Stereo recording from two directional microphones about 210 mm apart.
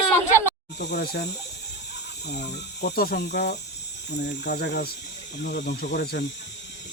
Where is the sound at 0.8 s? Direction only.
50° left (ahead or behind).